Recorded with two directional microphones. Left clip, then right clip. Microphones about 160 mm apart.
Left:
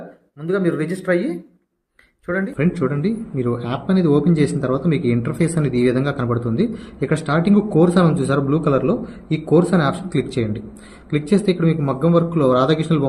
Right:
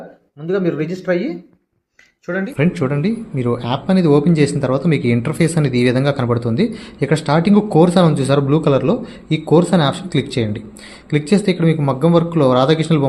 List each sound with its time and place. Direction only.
0.4 s speech: 20° right (ahead or behind)
2.6 s speech: 30° right (ahead or behind)